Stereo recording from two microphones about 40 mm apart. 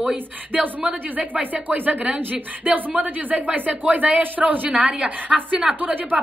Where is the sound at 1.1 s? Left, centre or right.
Right.